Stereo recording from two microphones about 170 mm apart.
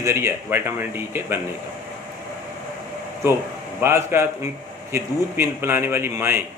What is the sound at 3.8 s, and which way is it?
A man's voice, 15° right (ahead or behind).